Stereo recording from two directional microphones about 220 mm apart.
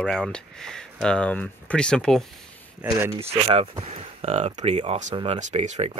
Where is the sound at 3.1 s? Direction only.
25° right (ahead or behind).